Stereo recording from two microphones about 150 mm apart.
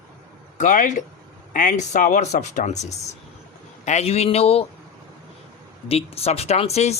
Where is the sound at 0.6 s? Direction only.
60° left (ahead or behind); by 4.6 s 40° left (ahead or behind).